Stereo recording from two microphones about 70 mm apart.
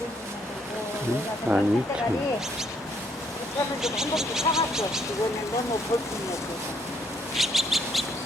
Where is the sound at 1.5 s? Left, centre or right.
Right.